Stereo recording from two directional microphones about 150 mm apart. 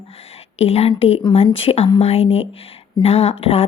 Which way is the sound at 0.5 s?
45° left (ahead or behind).